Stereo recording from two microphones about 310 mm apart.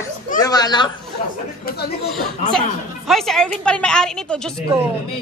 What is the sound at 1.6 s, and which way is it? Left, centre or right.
Speech, left.